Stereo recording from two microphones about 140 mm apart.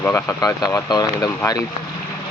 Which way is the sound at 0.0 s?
15° left (ahead or behind).